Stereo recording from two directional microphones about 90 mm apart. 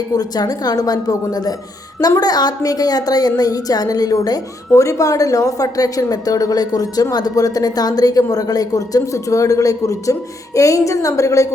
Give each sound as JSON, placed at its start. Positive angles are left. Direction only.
{"t": 0.1, "sound": "a woman's voice", "side_deg": 45}